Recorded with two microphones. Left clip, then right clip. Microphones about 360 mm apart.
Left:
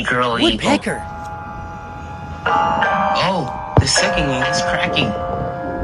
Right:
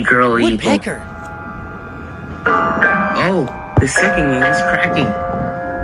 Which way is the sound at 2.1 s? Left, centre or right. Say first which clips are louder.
Right 3 dB; centre.